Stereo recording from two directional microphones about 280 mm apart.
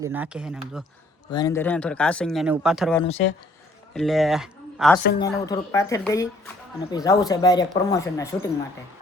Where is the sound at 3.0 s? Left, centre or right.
Left.